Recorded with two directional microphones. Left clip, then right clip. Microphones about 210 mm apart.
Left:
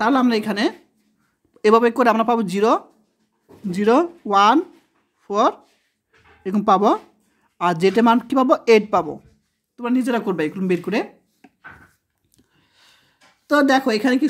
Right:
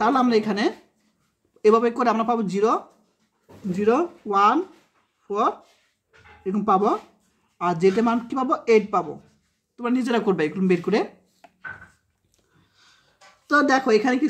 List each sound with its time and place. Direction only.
0.0 s speech: 35° left (ahead or behind)
9.8 s a woman's voice: 25° left (ahead or behind)
12.7 s a sound: 35° left (ahead or behind)
13.5 s speech: 35° left (ahead or behind)